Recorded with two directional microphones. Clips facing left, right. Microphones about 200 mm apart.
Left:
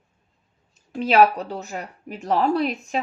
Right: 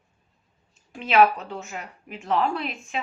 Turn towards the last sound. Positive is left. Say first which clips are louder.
# left 7 dB
turn(degrees=40)  # may be behind; listen again after turning